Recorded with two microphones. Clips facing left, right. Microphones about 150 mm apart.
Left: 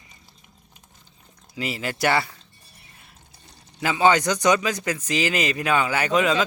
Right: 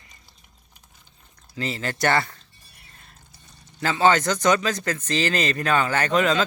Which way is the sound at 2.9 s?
10° left (ahead or behind).